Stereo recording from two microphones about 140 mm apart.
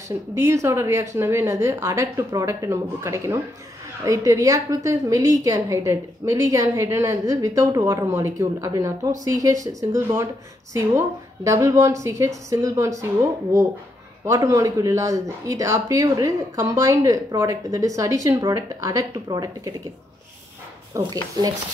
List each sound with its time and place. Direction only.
0.3 s speech: 20° right (ahead or behind)
14.2 s speech: 20° right (ahead or behind)
20.9 s speech: 30° right (ahead or behind)